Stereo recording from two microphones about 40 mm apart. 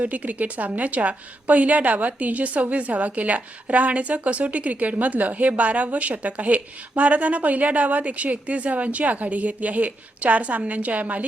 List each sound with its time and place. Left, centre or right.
0.0 s a woman's voice: right